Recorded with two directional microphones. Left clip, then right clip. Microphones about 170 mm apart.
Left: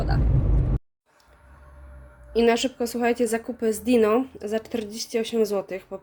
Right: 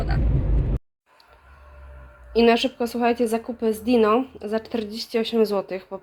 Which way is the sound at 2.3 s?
10° left (ahead or behind).